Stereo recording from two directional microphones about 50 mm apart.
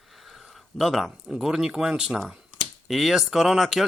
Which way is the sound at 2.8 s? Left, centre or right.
Centre.